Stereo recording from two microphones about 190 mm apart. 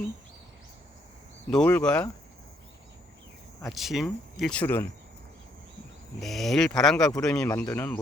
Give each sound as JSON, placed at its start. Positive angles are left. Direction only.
{"t": 1.5, "sound": "speech", "side_deg": 5}
{"t": 3.6, "sound": "speech", "side_deg": 0}
{"t": 6.1, "sound": "speech", "side_deg": 0}
{"t": 7.1, "sound": "speech", "side_deg": 15}